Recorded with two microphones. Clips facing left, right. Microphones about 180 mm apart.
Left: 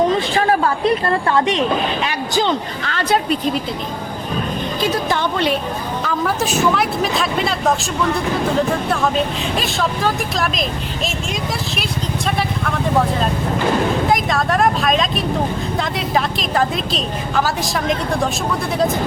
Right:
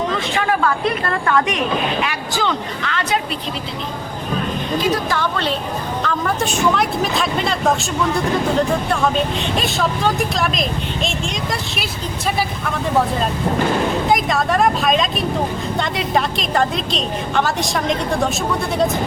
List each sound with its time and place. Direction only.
0.3 s a woman's voice: 35° left (ahead or behind)
2.8 s a woman's voice: 35° left (ahead or behind)
5.0 s a woman's voice: 20° left (ahead or behind)
6.0 s a woman's voice: 5° left (ahead or behind)
8.9 s a woman's voice: centre (ahead or behind)
14.1 s a woman's voice: centre (ahead or behind)